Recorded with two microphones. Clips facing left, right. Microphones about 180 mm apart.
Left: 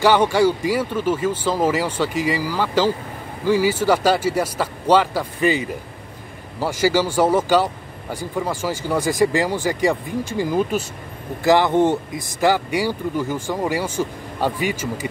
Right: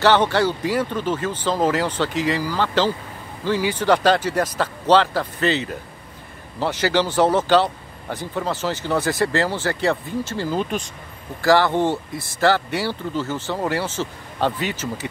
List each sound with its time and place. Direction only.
0.0 s speech: 10° left (ahead or behind)